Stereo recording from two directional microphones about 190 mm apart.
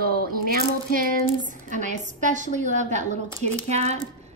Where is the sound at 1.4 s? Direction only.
40° right (ahead or behind).